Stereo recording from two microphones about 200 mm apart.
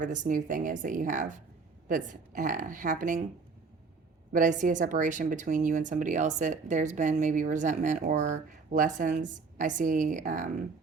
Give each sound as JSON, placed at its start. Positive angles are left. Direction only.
{"t": 0.0, "sound": "speech", "side_deg": -40}
{"t": 4.3, "sound": "speech", "side_deg": -40}